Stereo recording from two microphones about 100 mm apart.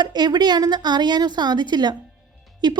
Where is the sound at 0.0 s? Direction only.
45° right (ahead or behind).